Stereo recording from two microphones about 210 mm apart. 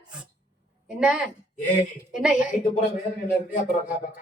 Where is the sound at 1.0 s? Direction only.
5° right (ahead or behind).